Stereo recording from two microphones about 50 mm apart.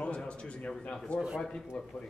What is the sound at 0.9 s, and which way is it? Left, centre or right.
Speech, centre.